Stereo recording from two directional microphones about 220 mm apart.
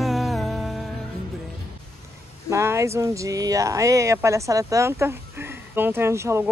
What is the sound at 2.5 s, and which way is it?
Speech, 10° right (ahead or behind).